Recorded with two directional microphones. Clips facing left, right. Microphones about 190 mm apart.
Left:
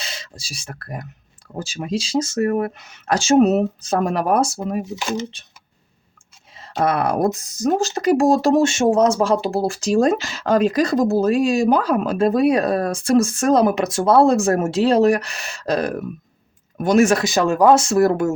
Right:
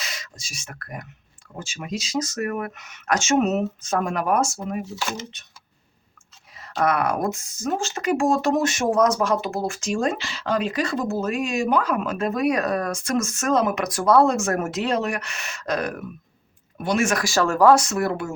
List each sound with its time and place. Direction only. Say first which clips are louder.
0.0 s speech: left 2 dB; 30° left (ahead or behind)
6.6 s speech: left 2 dB; 30° left (ahead or behind)
17.2 s speech: left 3 dB; 20° left (ahead or behind); by 18.3 s 40° left (ahead or behind)